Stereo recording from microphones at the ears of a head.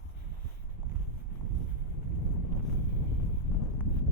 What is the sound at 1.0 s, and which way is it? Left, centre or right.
Boat, left.